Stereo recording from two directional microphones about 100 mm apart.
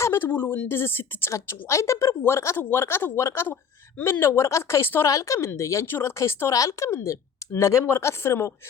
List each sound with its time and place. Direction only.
0.0 s a woman's voice: 25° left (ahead or behind)